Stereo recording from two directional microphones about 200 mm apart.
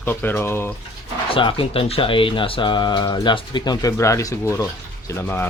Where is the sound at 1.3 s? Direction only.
25° left (ahead or behind).